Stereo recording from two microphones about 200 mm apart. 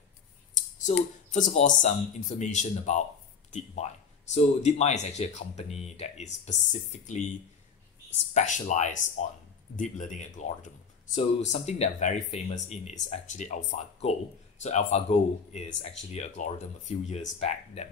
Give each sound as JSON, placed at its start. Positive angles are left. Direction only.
{"t": 1.3, "sound": "speech", "side_deg": 35}
{"t": 8.3, "sound": "speech", "side_deg": 35}